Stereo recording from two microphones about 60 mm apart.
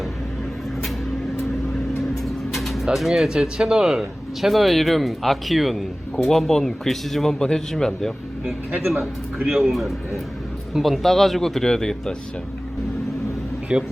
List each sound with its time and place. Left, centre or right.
2.0 s speech: centre
8.9 s a man's voice: centre
9.6 s speech: centre
13.7 s a man's voice: centre